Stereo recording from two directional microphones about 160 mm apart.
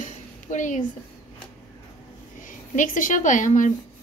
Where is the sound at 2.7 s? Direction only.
55° left (ahead or behind).